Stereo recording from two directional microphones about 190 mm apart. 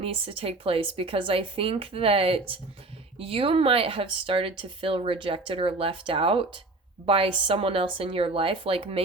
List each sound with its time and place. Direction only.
0.0 s speech: 30° right (ahead or behind)